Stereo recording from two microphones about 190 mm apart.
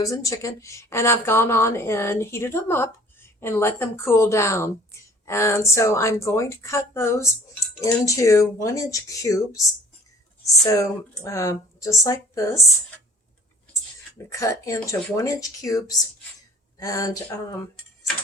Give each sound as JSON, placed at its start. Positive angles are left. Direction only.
{"t": 0.0, "sound": "speech", "side_deg": 15}
{"t": 14.3, "sound": "speech", "side_deg": 15}